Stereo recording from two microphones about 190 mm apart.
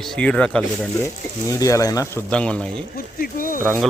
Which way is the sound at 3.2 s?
45° left (ahead or behind).